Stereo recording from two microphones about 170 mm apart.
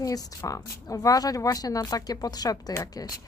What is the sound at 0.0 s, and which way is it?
Speech, 20° left (ahead or behind).